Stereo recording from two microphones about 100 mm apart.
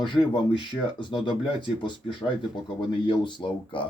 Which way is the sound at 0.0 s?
55° left (ahead or behind).